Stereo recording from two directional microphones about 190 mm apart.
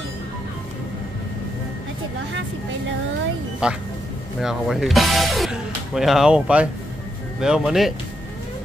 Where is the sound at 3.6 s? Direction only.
5° right (ahead or behind).